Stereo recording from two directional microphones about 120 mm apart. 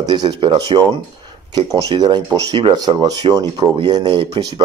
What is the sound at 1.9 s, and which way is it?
Speech, 35° right (ahead or behind).